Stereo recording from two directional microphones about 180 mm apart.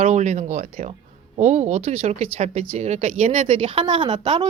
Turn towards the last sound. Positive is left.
turn(degrees=-30)  # may be behind; listen again after turning